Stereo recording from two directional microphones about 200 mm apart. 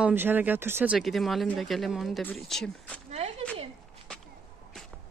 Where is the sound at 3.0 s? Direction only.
35° right (ahead or behind).